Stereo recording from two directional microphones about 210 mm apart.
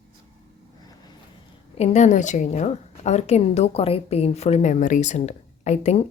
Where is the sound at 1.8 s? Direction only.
30° left (ahead or behind).